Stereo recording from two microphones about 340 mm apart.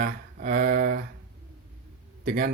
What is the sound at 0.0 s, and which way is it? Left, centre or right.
Speech, right.